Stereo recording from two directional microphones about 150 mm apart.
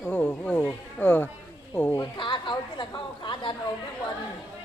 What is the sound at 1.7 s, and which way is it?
Goat, 15° left (ahead or behind).